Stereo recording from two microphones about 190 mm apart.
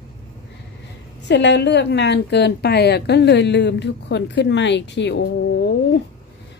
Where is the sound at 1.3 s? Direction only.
65° left (ahead or behind).